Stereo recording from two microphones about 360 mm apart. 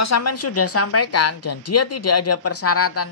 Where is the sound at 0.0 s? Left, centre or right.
Left.